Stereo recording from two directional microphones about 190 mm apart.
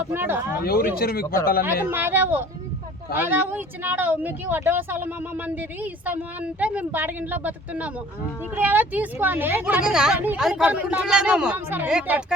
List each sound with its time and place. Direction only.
0.0 s speech: 10° right (ahead or behind)
0.6 s speech: 55° left (ahead or behind)
1.6 s speech: 10° right (ahead or behind)